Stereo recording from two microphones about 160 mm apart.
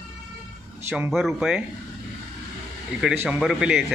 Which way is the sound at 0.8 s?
15° right (ahead or behind).